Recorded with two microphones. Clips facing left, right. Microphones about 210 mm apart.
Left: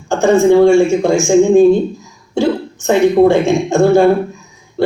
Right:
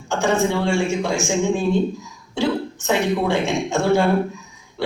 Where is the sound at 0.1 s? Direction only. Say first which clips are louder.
Left 10 dB; 45° left (ahead or behind).